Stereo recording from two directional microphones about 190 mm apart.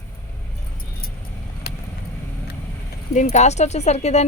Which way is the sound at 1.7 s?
55° left (ahead or behind).